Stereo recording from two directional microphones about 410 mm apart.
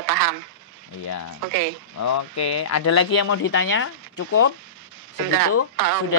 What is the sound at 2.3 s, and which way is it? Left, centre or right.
Speech, left.